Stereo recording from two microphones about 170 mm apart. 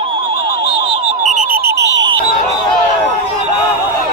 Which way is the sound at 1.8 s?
90° right.